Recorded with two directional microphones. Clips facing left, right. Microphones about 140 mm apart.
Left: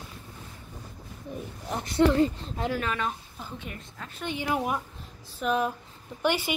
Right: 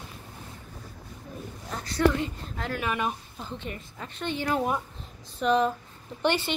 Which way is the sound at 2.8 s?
15° right (ahead or behind).